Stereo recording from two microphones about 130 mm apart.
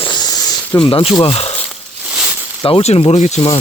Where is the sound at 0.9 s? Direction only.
45° left (ahead or behind).